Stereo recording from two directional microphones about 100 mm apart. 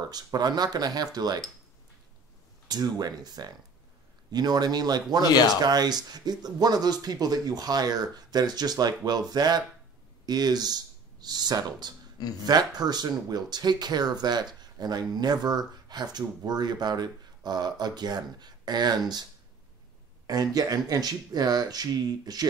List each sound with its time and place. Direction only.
0.0 s speech: 40° right (ahead or behind)
2.7 s speech: 40° right (ahead or behind)
20.2 s speech: 40° right (ahead or behind)